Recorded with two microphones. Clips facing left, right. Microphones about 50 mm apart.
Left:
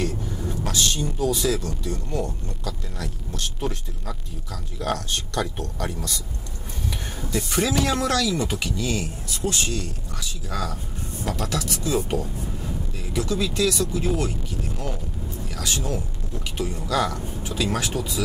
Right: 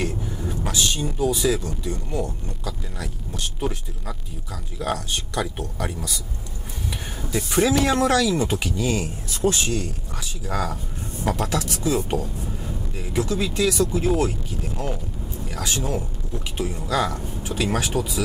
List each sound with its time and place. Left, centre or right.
0.0 s speech: centre
4.7 s speech: centre
7.2 s speech: centre; by 12.1 s right
12.1 s a sound: centre
13.1 s speech: right
15.4 s a man's voice: centre